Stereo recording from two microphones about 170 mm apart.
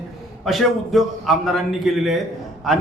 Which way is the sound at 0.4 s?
Centre (ahead or behind).